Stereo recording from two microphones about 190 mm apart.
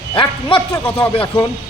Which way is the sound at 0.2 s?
25° left (ahead or behind).